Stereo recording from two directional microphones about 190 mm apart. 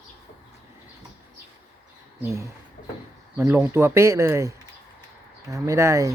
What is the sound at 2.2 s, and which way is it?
Speech, 15° right (ahead or behind).